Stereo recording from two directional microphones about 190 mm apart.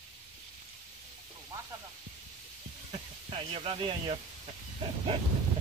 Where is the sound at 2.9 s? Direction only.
30° right (ahead or behind).